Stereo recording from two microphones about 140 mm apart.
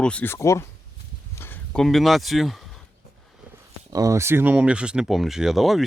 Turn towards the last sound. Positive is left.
turn(degrees=0)  # may be behind; listen again after turning